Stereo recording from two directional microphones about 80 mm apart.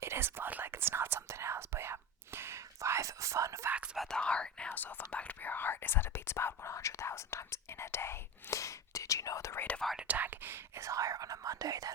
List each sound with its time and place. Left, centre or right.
0.0 s whispering: right
3.9 s whispering: centre
4.2 s speech: centre; by 9.6 s left
9.6 s speech: centre
10.0 s speech: centre
10.8 s speech: right